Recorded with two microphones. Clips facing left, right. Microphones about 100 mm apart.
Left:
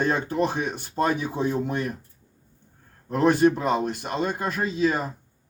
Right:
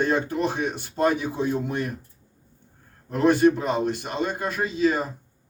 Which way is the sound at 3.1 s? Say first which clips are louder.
Right 1 dB; 45° left (ahead or behind).